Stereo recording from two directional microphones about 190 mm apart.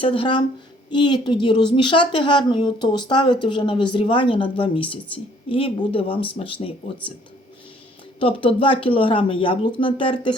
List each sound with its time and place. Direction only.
0.0 s a woman's voice: 30° left (ahead or behind)
8.2 s a woman's voice: 30° left (ahead or behind)